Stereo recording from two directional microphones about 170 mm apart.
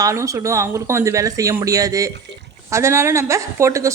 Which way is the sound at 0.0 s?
20° right (ahead or behind).